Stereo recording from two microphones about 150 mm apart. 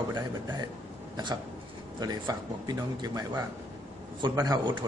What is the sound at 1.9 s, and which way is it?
A man's voice, 25° right (ahead or behind).